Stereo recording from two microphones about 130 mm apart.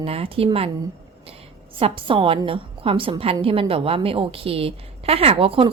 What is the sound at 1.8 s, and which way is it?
A woman's voice, 45° right (ahead or behind).